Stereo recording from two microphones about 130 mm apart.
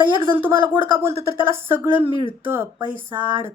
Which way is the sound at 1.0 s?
20° right (ahead or behind).